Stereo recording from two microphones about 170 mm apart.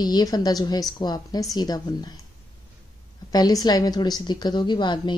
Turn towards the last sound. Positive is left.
turn(degrees=25)  # may be behind; listen again after turning